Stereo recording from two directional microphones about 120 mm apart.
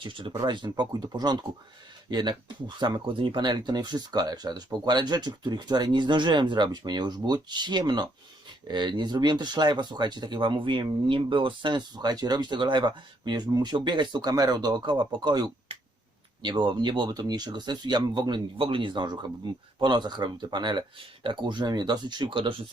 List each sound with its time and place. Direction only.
0.0 s speech: 45° right (ahead or behind)
15.7 s a sound: 55° right (ahead or behind)
16.4 s speech: 40° right (ahead or behind)